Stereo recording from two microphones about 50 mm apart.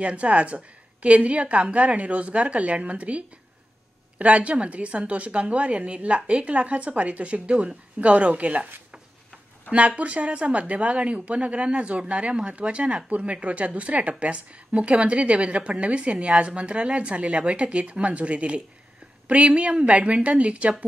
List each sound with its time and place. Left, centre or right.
0.0 s speech: right